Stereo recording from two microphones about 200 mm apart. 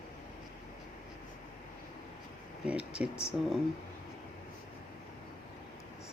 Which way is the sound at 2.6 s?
5° right (ahead or behind).